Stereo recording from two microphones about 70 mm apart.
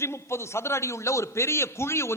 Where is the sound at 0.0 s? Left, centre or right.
Left.